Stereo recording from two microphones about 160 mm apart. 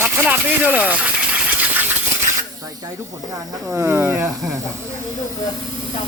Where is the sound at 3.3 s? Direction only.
20° right (ahead or behind); by 4.6 s centre (ahead or behind).